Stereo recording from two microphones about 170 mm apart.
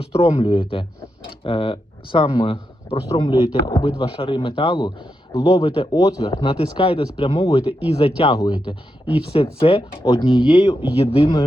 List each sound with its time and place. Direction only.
0.0 s speech: 35° left (ahead or behind)
5.3 s speech: 20° left (ahead or behind)
5.6 s speech: 30° left (ahead or behind)
8.4 s speech: 25° left (ahead or behind)